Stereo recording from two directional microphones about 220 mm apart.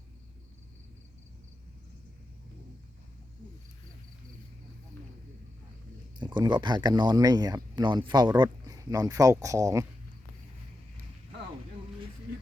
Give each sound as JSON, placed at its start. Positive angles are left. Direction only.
{"t": 6.1, "sound": "speech", "side_deg": -20}